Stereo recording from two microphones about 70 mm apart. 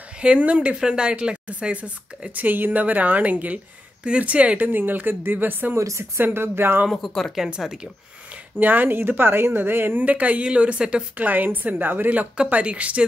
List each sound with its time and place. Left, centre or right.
0.2 s speech: centre
5.8 s speech: right
6.2 s a woman's voice: right
6.9 s speech: centre
7.6 s speech: centre
8.5 s a woman's voice: right
10.0 s speech: centre